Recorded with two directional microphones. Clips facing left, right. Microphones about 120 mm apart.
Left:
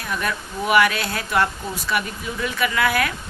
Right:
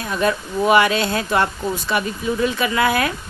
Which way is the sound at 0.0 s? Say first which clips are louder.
Right 6 dB; 25° right (ahead or behind).